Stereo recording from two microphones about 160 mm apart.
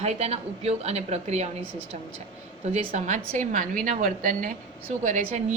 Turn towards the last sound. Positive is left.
turn(degrees=-50)  # may be behind; listen again after turning